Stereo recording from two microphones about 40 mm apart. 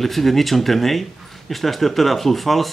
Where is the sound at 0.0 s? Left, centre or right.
Centre.